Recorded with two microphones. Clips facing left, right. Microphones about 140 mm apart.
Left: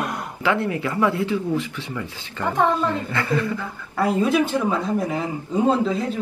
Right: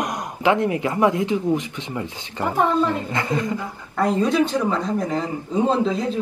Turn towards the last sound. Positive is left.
turn(degrees=5)  # may be behind; listen again after turning